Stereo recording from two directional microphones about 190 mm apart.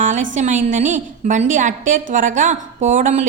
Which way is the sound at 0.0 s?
40° right (ahead or behind).